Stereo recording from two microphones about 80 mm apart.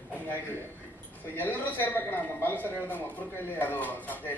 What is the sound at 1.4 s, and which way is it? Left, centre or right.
Speech, left.